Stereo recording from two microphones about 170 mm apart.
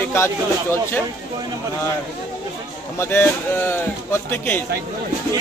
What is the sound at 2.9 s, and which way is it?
Speech, 15° left (ahead or behind).